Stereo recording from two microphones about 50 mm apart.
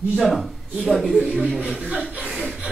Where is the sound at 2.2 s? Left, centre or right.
Centre.